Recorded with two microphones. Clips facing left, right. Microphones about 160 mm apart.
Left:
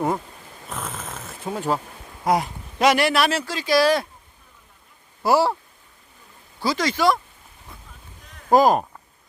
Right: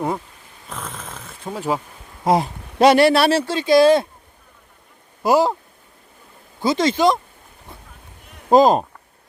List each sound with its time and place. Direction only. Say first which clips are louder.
0.7 s snoring: even; 5° left (ahead or behind)
2.2 s speech: right 3 dB; 25° right (ahead or behind)
5.2 s speech: right 2 dB; 20° right (ahead or behind)
6.6 s speech: right 5 dB; 25° right (ahead or behind)
8.4 s speech: right 3 dB; 20° right (ahead or behind)